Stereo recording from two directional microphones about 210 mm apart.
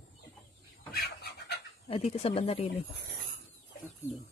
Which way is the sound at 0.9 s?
50° left (ahead or behind).